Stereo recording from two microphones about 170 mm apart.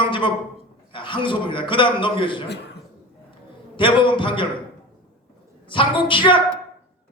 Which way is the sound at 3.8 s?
30° left (ahead or behind).